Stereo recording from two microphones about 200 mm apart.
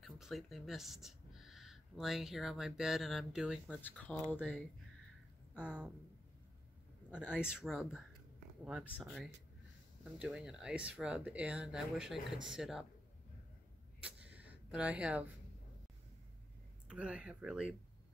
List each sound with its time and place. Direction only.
0.0 s speech: centre (ahead or behind)
7.3 s speech: 5° right (ahead or behind)
14.0 s a sound: 5° right (ahead or behind)
16.8 s speech: 5° right (ahead or behind)